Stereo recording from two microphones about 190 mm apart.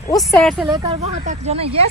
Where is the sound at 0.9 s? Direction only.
35° right (ahead or behind).